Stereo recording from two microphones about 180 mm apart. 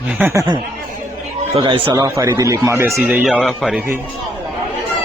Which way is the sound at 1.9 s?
15° right (ahead or behind).